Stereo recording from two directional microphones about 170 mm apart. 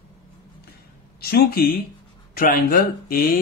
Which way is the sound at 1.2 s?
65° left (ahead or behind).